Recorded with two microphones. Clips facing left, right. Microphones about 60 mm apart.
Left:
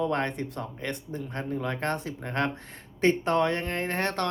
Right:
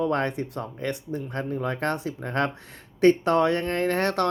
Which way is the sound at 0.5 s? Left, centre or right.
Right.